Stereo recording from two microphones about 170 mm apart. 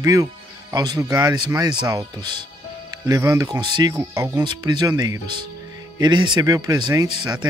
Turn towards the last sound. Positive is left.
turn(degrees=-25)  # may be behind; listen again after turning